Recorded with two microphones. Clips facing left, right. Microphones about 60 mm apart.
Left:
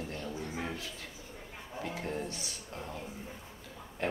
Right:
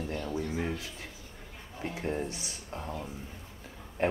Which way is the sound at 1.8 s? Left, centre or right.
Right.